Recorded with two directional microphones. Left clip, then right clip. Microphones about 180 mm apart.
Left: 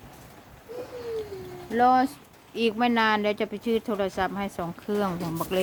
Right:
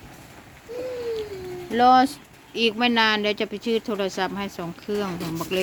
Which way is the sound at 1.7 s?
15° right (ahead or behind).